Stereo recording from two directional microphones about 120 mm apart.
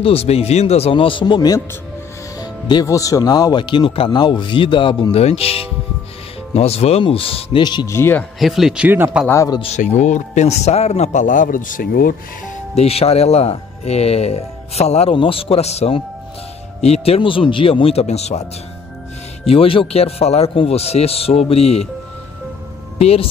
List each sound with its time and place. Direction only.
0.0 s speech: 55° left (ahead or behind)
5.2 s speech: 55° left (ahead or behind)
7.8 s speech: 20° left (ahead or behind)
8.4 s speech: centre (ahead or behind)
8.8 s speech: 15° right (ahead or behind)
9.3 s speech: 25° left (ahead or behind)
9.8 s a man's voice: 85° left
12.7 s speech: 55° left (ahead or behind)
15.1 s speech: 50° left (ahead or behind); by 18.4 s 65° left (ahead or behind)
19.4 s speech: 50° left (ahead or behind)
22.9 s speech: 55° left (ahead or behind)